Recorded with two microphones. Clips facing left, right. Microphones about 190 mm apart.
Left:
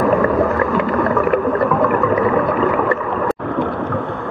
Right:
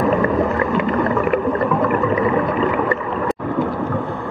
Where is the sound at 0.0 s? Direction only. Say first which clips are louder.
Left 2 dB; 15° right (ahead or behind).